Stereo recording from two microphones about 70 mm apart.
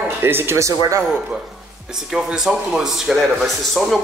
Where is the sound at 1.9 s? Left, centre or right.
Centre.